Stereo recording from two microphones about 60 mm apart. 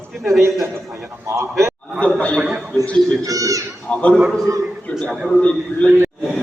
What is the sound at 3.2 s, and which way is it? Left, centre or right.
Speech, right.